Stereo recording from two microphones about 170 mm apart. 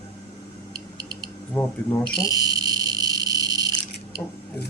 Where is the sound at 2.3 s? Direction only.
20° right (ahead or behind).